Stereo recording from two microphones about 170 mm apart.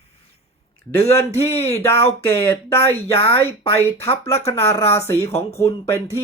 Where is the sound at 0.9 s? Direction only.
15° left (ahead or behind).